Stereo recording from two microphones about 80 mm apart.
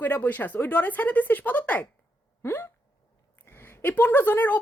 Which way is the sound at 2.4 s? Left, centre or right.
Left.